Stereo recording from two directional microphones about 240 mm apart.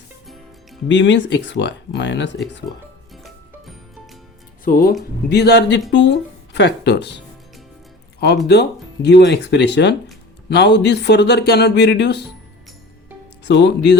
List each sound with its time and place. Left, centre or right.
0.9 s speech: left
3.2 s music: centre
4.6 s speech: left
8.4 s speech: left
13.4 s speech: left